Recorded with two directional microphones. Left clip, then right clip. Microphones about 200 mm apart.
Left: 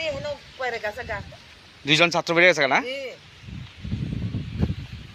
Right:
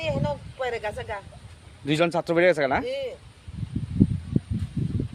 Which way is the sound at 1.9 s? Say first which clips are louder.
Left 4 dB; 20° right (ahead or behind).